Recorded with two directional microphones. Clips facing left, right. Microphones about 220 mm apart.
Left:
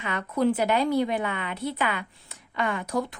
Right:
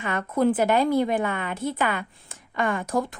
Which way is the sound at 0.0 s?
50° right (ahead or behind).